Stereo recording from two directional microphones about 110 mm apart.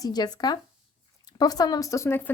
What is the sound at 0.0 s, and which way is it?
Speech, 35° left (ahead or behind).